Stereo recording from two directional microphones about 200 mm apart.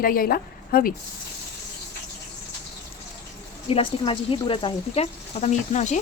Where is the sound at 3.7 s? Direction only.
25° left (ahead or behind).